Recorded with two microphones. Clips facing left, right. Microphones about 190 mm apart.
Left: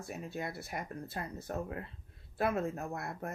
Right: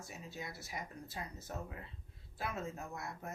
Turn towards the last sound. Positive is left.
turn(degrees=60)  # may be behind; listen again after turning